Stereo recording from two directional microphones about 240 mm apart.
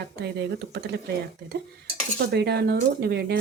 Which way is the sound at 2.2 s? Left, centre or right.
Right.